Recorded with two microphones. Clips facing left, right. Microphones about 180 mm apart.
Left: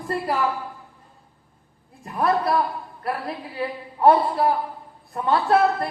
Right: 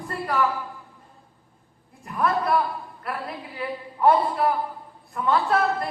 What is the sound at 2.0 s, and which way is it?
Speech, 35° left (ahead or behind).